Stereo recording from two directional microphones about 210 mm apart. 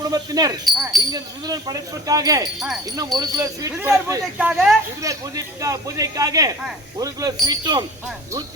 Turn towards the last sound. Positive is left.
turn(degrees=-20)  # may be behind; listen again after turning